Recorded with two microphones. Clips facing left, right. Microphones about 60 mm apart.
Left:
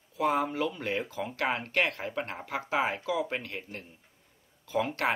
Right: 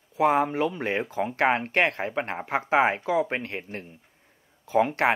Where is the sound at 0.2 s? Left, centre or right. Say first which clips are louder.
Right 6 dB; right.